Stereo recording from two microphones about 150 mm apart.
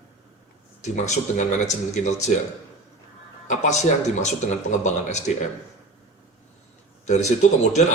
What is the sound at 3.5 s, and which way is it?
A man's voice, 50° left (ahead or behind).